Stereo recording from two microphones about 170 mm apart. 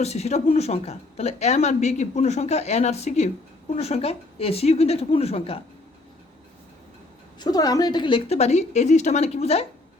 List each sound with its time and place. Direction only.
0.0 s speech: 40° left (ahead or behind)
7.3 s speech: 25° left (ahead or behind)